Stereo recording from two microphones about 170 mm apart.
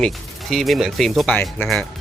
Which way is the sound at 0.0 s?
Centre (ahead or behind).